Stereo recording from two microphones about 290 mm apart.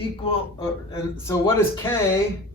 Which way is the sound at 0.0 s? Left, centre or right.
Centre.